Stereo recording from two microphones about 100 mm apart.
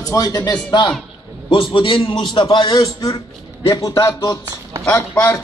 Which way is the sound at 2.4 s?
45° left (ahead or behind).